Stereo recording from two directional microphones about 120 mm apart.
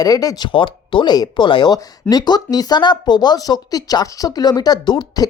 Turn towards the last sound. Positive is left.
turn(degrees=35)  # may be behind; listen again after turning